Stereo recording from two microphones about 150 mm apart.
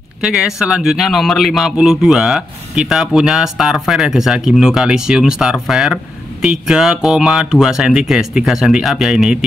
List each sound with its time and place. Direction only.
0.2 s a man's voice: 5° right (ahead or behind)